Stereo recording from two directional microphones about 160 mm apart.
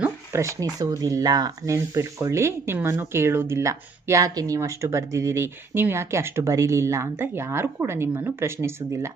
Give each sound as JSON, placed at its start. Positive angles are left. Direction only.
{"t": 0.0, "sound": "speech", "side_deg": -20}